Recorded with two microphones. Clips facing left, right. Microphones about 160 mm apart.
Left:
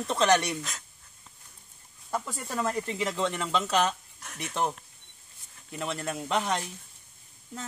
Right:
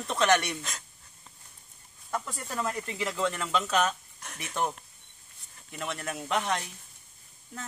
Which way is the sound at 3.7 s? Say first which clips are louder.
Left 1 dB; centre (ahead or behind).